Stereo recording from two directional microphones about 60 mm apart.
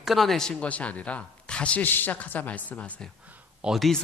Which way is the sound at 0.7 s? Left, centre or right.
Left.